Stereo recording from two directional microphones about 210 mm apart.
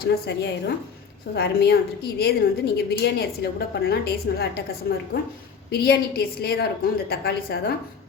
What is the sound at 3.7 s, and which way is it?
Speech, 50° left (ahead or behind).